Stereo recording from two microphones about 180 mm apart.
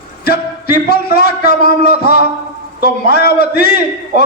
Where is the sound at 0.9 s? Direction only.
60° left (ahead or behind).